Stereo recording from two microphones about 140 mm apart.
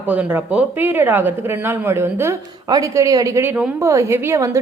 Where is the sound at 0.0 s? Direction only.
10° right (ahead or behind).